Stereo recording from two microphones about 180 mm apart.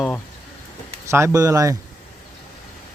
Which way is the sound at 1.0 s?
15° right (ahead or behind).